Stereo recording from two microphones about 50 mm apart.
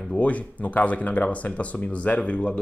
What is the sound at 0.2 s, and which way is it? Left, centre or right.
Speech, left.